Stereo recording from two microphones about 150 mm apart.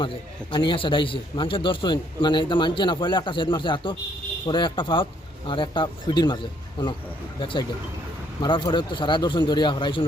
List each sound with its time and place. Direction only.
0.0 s a man's voice: 35° left (ahead or behind)
8.4 s a man's voice: 30° left (ahead or behind)